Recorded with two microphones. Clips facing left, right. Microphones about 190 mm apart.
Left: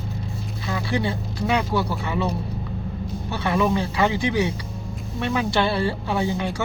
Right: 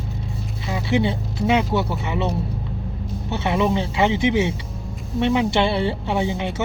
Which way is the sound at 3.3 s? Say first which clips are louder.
Right 1 dB; 25° right (ahead or behind).